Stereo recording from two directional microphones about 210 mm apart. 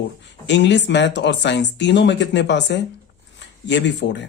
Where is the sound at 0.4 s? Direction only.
55° left (ahead or behind).